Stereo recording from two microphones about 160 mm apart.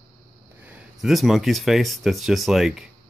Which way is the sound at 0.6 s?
5° right (ahead or behind).